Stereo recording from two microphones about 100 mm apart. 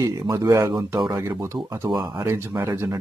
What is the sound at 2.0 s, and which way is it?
Speech, 40° right (ahead or behind).